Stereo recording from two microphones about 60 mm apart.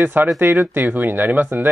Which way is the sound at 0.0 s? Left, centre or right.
Right.